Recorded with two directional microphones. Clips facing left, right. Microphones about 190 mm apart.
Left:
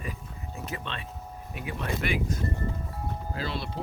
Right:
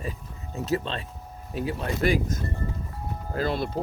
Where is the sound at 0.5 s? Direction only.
35° right (ahead or behind).